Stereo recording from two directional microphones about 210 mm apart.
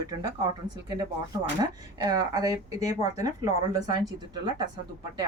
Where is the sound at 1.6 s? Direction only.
20° right (ahead or behind).